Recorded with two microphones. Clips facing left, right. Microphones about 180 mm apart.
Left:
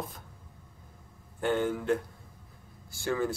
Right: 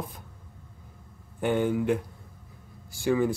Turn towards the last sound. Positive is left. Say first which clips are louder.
# right 6 dB
turn(degrees=-15)  # may be behind; listen again after turning